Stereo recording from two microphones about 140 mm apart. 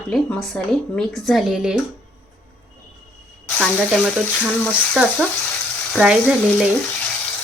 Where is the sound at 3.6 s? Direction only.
Centre (ahead or behind).